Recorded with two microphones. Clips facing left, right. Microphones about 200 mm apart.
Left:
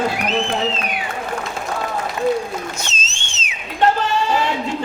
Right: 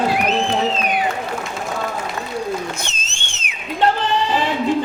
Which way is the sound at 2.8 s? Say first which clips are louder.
Left 1 dB; 55° right (ahead or behind).